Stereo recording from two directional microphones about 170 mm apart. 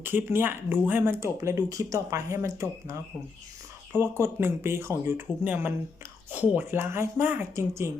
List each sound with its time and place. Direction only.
0.0 s speech: 15° right (ahead or behind)
3.9 s speech: 15° right (ahead or behind)